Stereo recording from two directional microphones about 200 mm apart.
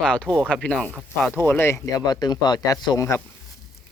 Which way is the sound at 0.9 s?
5° right (ahead or behind).